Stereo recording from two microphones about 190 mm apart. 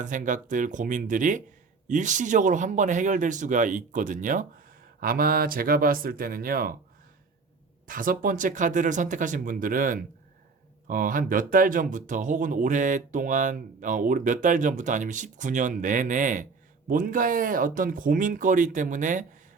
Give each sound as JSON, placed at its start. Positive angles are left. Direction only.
{"t": 0.0, "sound": "speech", "side_deg": -45}
{"t": 7.9, "sound": "speech", "side_deg": -45}